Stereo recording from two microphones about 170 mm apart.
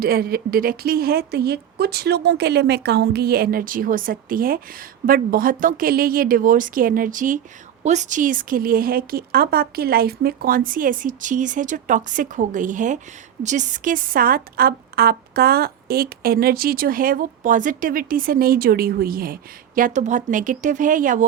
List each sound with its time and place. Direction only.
0.0 s a woman's voice: 60° right (ahead or behind)